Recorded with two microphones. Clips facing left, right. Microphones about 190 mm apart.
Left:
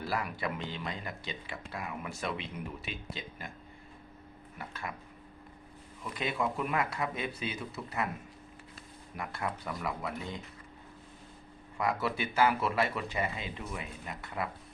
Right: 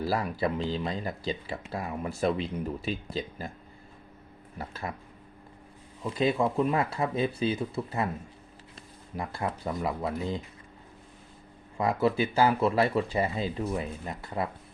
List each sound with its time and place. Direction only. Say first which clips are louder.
0.0 s speech: right 6 dB; 35° right (ahead or behind)
4.5 s speech: right 5 dB; 35° right (ahead or behind)
6.0 s speech: right 8 dB; 30° right (ahead or behind)
9.1 s speech: right 4 dB; 30° right (ahead or behind)
11.8 s speech: right 7 dB; 25° right (ahead or behind)